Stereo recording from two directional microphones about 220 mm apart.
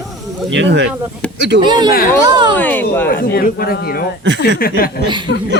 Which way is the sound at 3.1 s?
45° left (ahead or behind).